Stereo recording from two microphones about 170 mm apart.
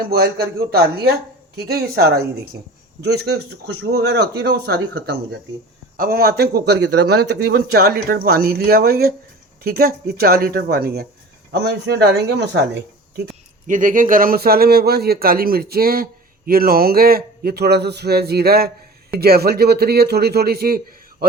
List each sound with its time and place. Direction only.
0.1 s speech: 65° right (ahead or behind); by 5.4 s 85° right
6.0 s a man's voice: 65° right (ahead or behind)
11.5 s speech: 75° right (ahead or behind)
13.7 s a man's voice: 50° right (ahead or behind)